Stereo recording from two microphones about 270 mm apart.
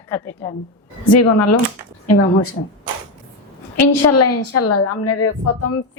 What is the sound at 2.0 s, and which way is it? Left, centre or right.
Speech, left.